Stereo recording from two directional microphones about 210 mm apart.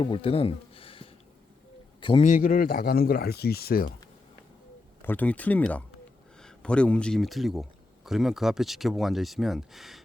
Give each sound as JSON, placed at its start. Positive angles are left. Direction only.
{"t": 0.0, "sound": "a man's voice", "side_deg": 25}
{"t": 2.2, "sound": "speech", "side_deg": 40}
{"t": 5.0, "sound": "speech", "side_deg": 5}